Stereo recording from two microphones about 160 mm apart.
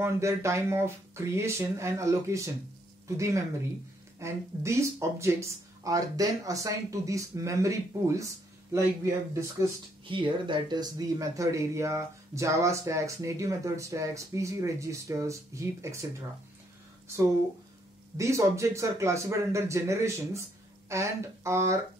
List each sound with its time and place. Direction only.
0.0 s speech: 20° right (ahead or behind)
10.0 s speech: 30° right (ahead or behind)
18.1 s speech: 20° right (ahead or behind)